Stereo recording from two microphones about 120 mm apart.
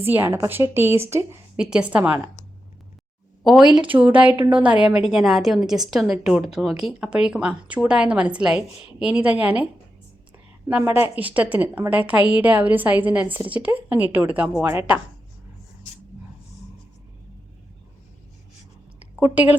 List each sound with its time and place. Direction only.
0.0 s a woman's voice: 20° right (ahead or behind)
1.5 s a woman's voice: 10° right (ahead or behind)
3.8 s a woman's voice: 10° right (ahead or behind)
10.7 s a woman's voice: 15° right (ahead or behind)
19.2 s a woman's voice: 10° right (ahead or behind)